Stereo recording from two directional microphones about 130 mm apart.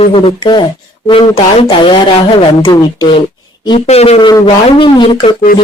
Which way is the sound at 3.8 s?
55° left (ahead or behind).